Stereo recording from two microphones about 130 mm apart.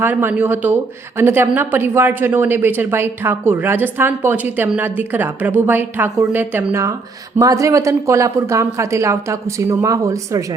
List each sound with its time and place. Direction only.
0.0 s a woman's voice: 15° right (ahead or behind)